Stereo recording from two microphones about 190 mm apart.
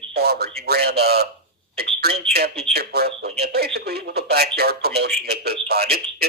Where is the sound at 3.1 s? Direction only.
30° right (ahead or behind).